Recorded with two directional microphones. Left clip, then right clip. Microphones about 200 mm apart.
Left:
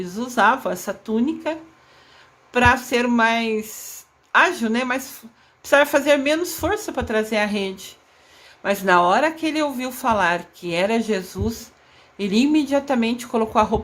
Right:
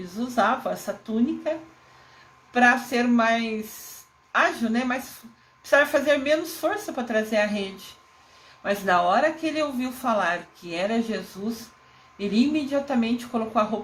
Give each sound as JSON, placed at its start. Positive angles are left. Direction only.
{"t": 0.0, "sound": "speech", "side_deg": 35}